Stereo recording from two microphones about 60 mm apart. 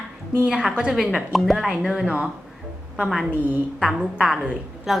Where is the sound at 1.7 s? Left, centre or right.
Centre.